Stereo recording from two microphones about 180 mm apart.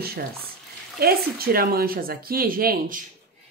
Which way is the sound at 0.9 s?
55° right (ahead or behind).